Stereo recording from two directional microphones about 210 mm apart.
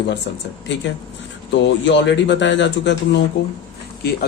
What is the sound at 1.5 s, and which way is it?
Speech, 55° left (ahead or behind).